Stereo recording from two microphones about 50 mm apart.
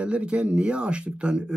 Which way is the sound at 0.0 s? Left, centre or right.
Right.